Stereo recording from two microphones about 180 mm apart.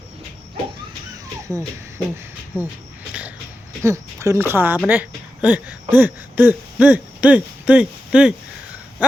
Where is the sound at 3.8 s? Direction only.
15° right (ahead or behind).